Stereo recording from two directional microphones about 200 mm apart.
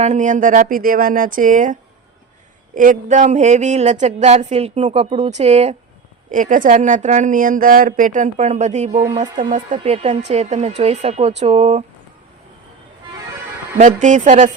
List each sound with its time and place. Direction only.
0.0 s speech: 35° right (ahead or behind)
13.7 s speech: 40° right (ahead or behind)